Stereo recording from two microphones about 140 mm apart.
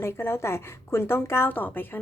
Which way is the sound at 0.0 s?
15° left (ahead or behind).